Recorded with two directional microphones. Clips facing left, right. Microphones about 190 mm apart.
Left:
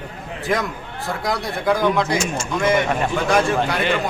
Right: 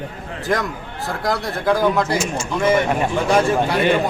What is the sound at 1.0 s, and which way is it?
Speech, centre (ahead or behind).